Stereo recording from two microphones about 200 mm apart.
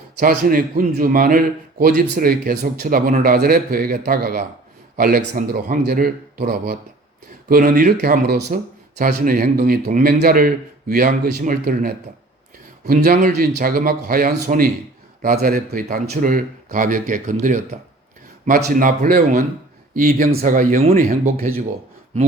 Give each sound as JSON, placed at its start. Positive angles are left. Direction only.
{"t": 0.2, "sound": "a man's voice", "side_deg": -45}